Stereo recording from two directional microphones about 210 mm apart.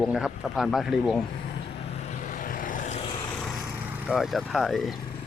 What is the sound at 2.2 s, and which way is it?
Vehicle, 40° left (ahead or behind).